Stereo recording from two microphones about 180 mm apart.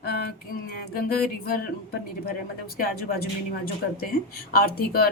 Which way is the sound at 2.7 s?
55° left (ahead or behind).